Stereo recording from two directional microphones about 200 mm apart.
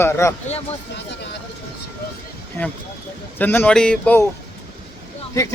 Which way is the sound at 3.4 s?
10° left (ahead or behind).